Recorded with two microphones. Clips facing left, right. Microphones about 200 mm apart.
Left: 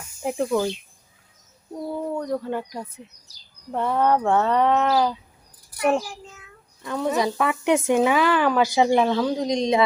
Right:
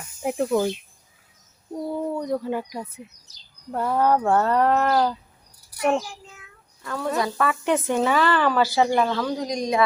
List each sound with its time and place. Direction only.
0.2 s speech: 5° right (ahead or behind)
2.1 s speech: 10° right (ahead or behind)
6.8 s a woman's voice: 20° left (ahead or behind)